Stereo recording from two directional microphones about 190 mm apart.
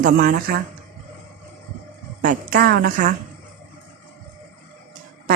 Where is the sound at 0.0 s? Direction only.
45° right (ahead or behind).